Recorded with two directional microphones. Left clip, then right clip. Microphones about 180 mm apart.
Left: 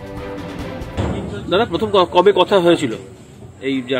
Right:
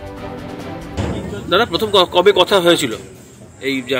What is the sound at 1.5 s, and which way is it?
A man's voice, 15° left (ahead or behind).